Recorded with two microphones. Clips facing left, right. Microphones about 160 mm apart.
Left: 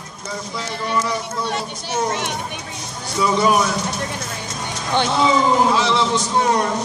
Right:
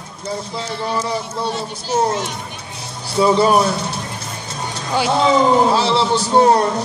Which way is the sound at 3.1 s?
30° right (ahead or behind).